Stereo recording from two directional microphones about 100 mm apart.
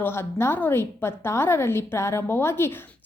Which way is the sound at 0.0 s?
25° left (ahead or behind).